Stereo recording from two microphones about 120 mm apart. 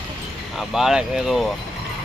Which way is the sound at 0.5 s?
5° right (ahead or behind).